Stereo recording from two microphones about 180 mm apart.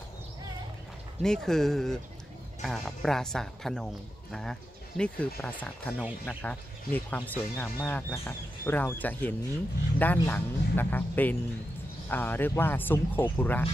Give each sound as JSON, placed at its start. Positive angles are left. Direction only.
{"t": 1.2, "sound": "speech", "side_deg": 5}